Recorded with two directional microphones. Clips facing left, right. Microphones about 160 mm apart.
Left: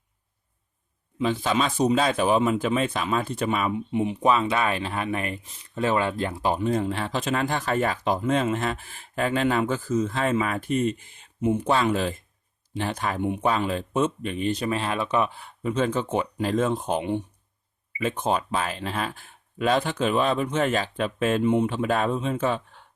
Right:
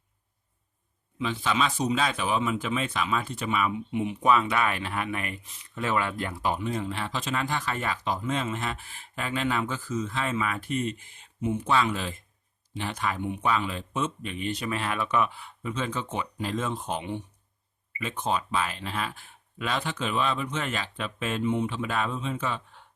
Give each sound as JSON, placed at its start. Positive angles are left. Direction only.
{"t": 1.2, "sound": "speech", "side_deg": 45}
{"t": 15.6, "sound": "speech", "side_deg": 50}